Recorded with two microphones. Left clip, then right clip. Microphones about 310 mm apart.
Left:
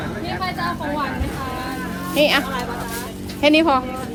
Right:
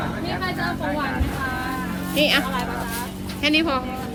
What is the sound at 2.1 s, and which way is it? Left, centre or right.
Speech, centre.